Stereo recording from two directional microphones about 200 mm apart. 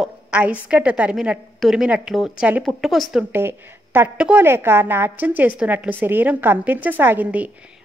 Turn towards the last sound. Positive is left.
turn(degrees=-5)  # may be behind; listen again after turning